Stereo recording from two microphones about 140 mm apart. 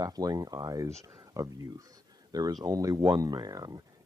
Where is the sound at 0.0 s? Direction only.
25° right (ahead or behind).